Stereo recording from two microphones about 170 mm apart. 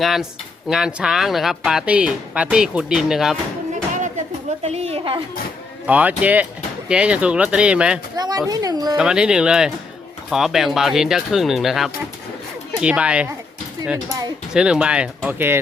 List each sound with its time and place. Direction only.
0.0 s speech: centre (ahead or behind)
4.6 s a woman's voice: 35° right (ahead or behind)
5.8 s speech: 10° right (ahead or behind)
8.1 s speech: 25° right (ahead or behind)
9.0 s speech: 5° right (ahead or behind)
14.5 s speech: 5° right (ahead or behind)